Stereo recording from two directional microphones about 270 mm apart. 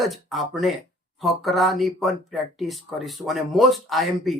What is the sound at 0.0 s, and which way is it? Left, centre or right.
Speech, centre.